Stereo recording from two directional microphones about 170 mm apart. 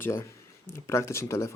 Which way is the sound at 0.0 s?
15° left (ahead or behind).